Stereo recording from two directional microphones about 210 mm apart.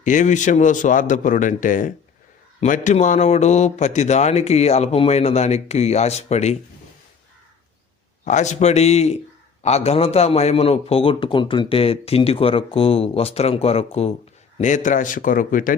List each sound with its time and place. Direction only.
0.0 s speech: 35° left (ahead or behind)
8.2 s a man's voice: 35° left (ahead or behind)